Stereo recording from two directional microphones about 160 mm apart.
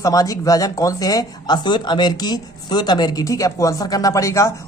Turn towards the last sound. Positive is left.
turn(degrees=20)  # may be behind; listen again after turning